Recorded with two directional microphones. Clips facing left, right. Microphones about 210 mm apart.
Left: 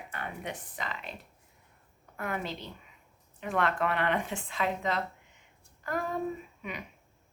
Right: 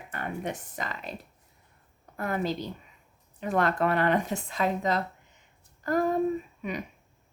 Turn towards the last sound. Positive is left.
turn(degrees=-40)  # may be behind; listen again after turning